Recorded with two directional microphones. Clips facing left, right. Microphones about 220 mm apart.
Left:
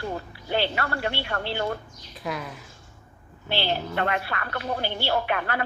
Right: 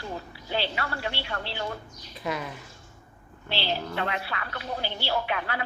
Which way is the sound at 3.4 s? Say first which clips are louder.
Left 3 dB; 50° left (ahead or behind).